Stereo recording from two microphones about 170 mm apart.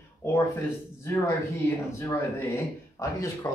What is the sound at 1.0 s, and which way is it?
Speech, 15° left (ahead or behind).